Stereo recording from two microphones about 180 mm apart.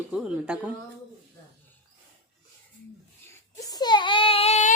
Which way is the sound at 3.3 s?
20° left (ahead or behind).